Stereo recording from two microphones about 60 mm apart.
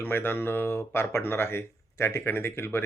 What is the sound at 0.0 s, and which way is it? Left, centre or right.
Speech, left.